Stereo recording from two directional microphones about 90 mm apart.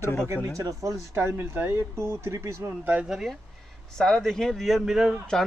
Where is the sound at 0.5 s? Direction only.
40° right (ahead or behind).